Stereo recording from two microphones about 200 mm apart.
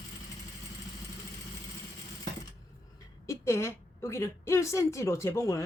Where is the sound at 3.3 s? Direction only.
15° left (ahead or behind).